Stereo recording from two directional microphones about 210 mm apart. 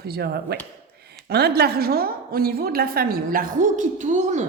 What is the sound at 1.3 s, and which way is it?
Speech, 50° right (ahead or behind).